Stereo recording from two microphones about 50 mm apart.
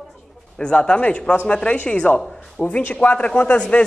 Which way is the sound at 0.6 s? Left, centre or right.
Left.